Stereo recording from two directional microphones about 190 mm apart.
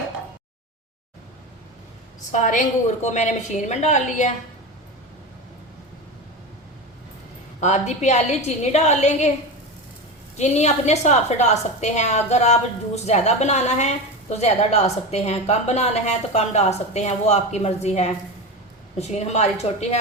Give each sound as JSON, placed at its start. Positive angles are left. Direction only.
{"t": 2.3, "sound": "a woman's voice", "side_deg": 40}
{"t": 7.6, "sound": "a woman's voice", "side_deg": 35}
{"t": 10.3, "sound": "a woman's voice", "side_deg": 35}